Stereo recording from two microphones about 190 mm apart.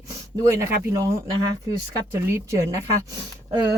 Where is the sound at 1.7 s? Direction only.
15° right (ahead or behind).